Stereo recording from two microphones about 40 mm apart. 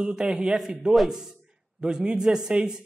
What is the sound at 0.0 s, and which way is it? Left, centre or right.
Speech, centre.